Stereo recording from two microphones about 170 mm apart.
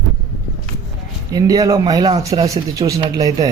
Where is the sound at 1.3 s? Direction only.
20° right (ahead or behind).